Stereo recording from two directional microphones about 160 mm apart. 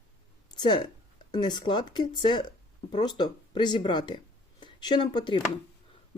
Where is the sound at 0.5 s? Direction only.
30° left (ahead or behind).